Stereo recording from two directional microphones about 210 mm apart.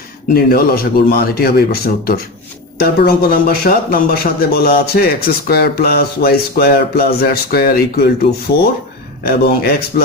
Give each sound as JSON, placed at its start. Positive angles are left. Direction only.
{"t": 0.3, "sound": "speech", "side_deg": 45}
{"t": 9.4, "sound": "speech", "side_deg": 50}